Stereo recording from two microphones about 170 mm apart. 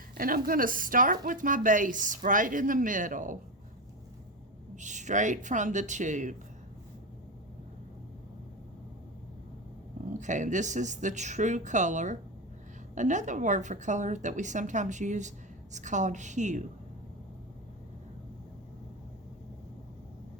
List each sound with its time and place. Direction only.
0.1 s a woman's voice: 55° right (ahead or behind)
4.8 s a woman's voice: 45° right (ahead or behind)
10.2 s a woman's voice: 45° right (ahead or behind)